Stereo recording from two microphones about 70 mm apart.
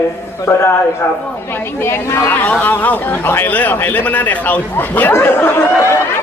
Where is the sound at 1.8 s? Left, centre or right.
Left.